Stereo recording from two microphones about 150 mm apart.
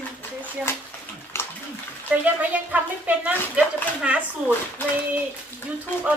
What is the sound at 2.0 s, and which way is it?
Speech, 10° right (ahead or behind).